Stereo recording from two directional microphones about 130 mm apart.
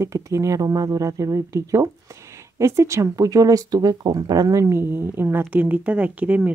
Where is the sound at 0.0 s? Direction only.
25° right (ahead or behind).